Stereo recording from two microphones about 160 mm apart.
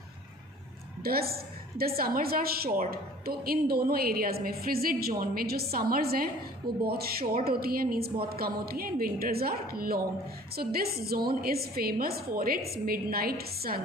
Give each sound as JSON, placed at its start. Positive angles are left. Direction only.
{"t": 1.0, "sound": "a woman's voice", "side_deg": -70}